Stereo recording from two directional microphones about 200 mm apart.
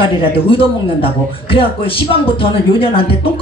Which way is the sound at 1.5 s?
25° left (ahead or behind).